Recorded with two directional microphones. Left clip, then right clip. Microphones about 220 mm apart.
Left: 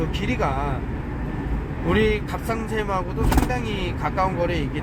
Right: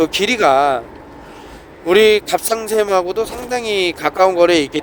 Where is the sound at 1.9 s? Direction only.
55° right (ahead or behind).